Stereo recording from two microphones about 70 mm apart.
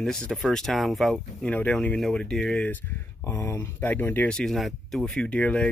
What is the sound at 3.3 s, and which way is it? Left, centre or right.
Speech, left.